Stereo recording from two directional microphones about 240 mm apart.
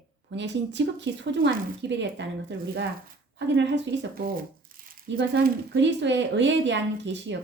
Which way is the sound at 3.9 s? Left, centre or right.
Right.